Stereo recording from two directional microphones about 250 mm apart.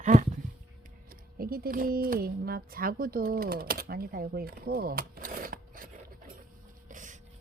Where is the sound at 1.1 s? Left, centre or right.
Right.